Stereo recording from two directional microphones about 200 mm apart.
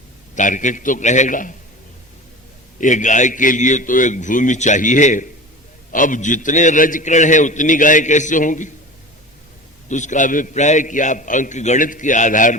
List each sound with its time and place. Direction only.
0.3 s a man's voice: 40° left (ahead or behind)
2.8 s a man's voice: 40° left (ahead or behind)
9.9 s a man's voice: 40° left (ahead or behind)